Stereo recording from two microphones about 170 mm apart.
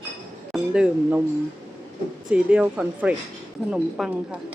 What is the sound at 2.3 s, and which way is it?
Speech, 5° right (ahead or behind).